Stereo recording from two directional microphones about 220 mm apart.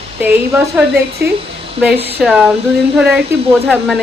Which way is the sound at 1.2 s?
45° right (ahead or behind).